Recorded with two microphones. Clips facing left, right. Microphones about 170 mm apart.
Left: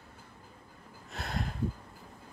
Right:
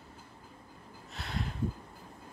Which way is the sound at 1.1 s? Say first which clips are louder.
Left 2 dB; 45° left (ahead or behind).